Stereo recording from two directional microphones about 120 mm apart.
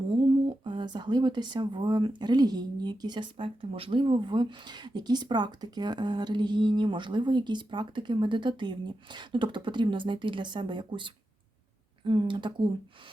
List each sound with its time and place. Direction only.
0.3 s speech: 40° right (ahead or behind)